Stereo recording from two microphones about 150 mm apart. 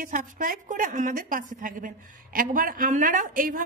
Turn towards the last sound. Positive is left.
turn(degrees=-65)  # may be behind; listen again after turning